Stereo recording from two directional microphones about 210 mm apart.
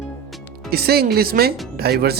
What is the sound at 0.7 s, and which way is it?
Speech, 45° right (ahead or behind).